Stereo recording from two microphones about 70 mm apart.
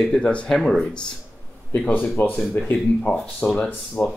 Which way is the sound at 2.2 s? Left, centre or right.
Left.